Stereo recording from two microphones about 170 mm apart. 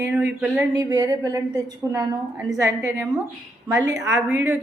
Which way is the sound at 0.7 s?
20° right (ahead or behind).